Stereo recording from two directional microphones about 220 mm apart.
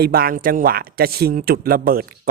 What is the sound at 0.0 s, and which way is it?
Speech, 45° right (ahead or behind).